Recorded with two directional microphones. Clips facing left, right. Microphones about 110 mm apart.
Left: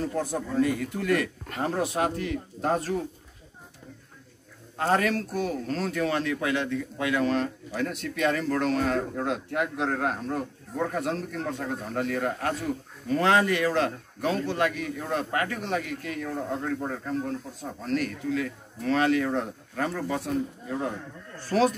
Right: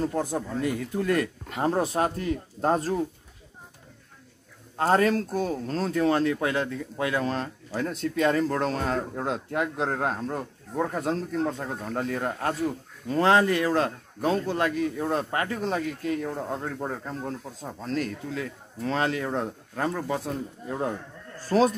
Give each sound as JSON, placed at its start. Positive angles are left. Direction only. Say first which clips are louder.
{"t": 0.2, "sound": "speech", "louder": "left 2 dB", "side_deg": -20}
{"t": 4.7, "sound": "a man's voice", "louder": "right 3 dB", "side_deg": -30}